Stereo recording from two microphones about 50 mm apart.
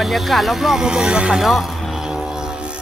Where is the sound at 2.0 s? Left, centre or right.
Centre.